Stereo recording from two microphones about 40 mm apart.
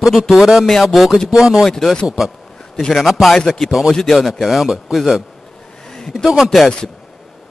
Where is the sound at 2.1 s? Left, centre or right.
Centre.